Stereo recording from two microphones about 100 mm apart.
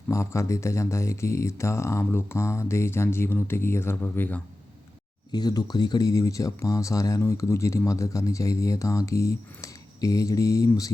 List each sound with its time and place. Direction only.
0.1 s speech: 30° left (ahead or behind)
5.3 s speech: 45° left (ahead or behind)